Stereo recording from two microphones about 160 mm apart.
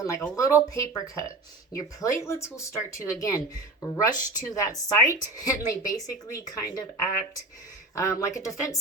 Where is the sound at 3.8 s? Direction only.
15° left (ahead or behind).